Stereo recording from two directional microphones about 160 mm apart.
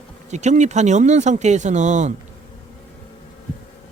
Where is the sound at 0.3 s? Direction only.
45° right (ahead or behind).